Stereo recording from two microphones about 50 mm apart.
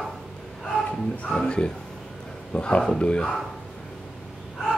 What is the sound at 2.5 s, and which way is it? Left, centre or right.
Speech, left.